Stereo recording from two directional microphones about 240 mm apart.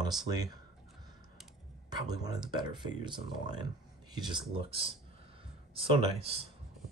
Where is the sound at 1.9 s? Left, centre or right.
Centre.